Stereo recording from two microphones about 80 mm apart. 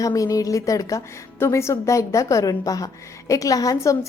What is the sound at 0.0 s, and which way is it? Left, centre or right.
A woman's voice, left.